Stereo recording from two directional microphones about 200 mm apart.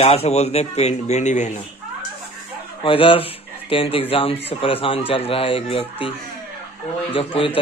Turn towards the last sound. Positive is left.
turn(degrees=25)  # may be behind; listen again after turning